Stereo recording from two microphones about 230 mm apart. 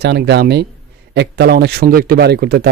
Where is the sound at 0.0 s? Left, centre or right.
Right.